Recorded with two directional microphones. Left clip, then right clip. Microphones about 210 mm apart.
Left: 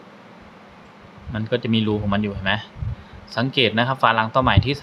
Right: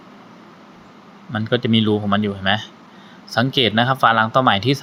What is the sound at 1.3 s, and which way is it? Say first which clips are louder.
Speech: right 4 dB; 15° right (ahead or behind).